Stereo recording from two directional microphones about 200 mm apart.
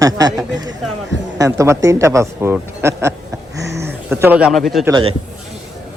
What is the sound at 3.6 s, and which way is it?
Speech, 55° right (ahead or behind).